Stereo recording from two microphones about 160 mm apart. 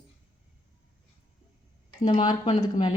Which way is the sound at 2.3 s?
40° left (ahead or behind).